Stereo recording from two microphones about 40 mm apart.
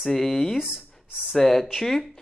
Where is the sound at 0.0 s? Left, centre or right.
Centre.